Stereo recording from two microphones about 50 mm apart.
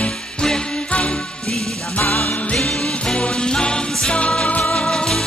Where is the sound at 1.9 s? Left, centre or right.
Left.